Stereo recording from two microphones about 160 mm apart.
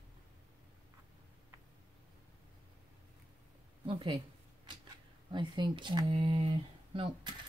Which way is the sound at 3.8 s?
30° right (ahead or behind).